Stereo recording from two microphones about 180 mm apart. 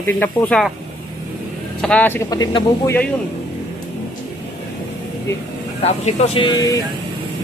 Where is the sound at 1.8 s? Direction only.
5° left (ahead or behind).